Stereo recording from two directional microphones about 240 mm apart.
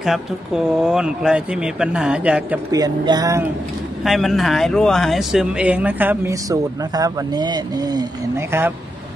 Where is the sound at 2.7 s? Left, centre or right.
Centre.